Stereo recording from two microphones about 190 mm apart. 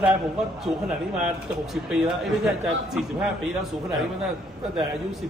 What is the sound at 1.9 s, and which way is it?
A man's voice, 5° right (ahead or behind).